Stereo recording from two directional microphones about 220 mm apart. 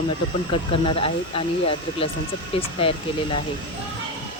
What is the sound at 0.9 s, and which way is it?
Speech, 25° left (ahead or behind).